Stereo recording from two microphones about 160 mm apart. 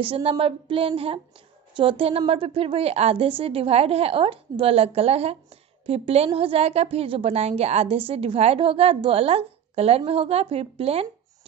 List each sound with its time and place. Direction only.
0.0 s a woman's voice: 35° right (ahead or behind)